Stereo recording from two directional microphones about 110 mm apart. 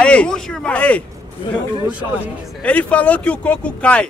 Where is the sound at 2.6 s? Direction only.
10° left (ahead or behind).